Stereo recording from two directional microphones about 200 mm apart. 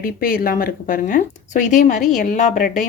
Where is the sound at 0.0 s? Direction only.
45° left (ahead or behind).